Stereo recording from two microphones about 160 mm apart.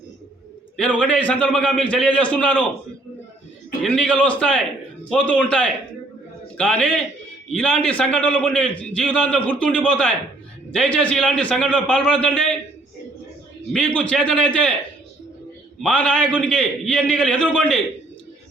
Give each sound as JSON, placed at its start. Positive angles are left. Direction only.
{"t": 0.8, "sound": "a man's voice", "side_deg": 10}
{"t": 3.8, "sound": "a man's voice", "side_deg": 5}
{"t": 13.7, "sound": "a man's voice", "side_deg": 5}
{"t": 15.8, "sound": "a man's voice", "side_deg": 5}